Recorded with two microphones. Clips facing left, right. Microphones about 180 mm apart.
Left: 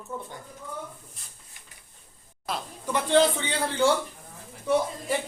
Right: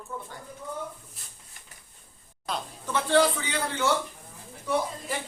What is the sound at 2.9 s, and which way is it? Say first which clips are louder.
A man's voice: left 1 dB; 20° left (ahead or behind).